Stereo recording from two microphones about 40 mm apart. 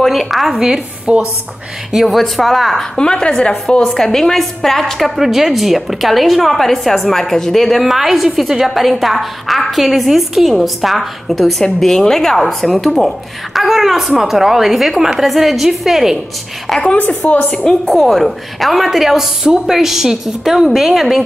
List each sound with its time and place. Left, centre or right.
0.0 s a woman's voice: centre
0.5 s a woman's voice: centre
1.1 s a woman's voice: right
2.0 s a woman's voice: centre
2.8 s a woman's voice: left
7.8 s a woman's voice: centre
16.8 s a woman's voice: left
17.6 s a woman's voice: centre
18.0 s a woman's voice: centre